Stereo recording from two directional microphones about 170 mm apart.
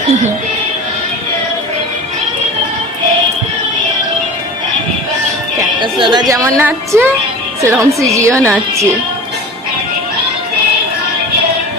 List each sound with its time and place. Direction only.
5.5 s a woman's voice: 25° right (ahead or behind)